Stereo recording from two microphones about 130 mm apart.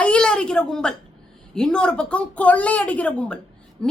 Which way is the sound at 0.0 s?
5° left (ahead or behind).